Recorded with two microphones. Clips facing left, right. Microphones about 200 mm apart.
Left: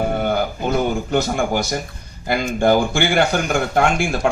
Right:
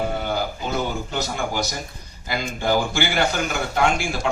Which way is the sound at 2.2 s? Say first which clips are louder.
Left 7 dB; 55° left (ahead or behind).